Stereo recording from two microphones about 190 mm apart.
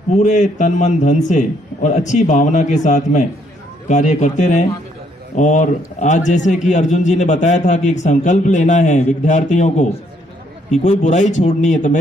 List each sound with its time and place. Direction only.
0.1 s a man's voice: 40° left (ahead or behind)